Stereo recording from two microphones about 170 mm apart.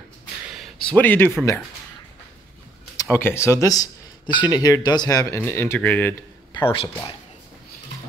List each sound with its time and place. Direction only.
0.6 s speech: 5° left (ahead or behind)
3.0 s speech: 15° left (ahead or behind)
6.5 s a sound: 30° left (ahead or behind)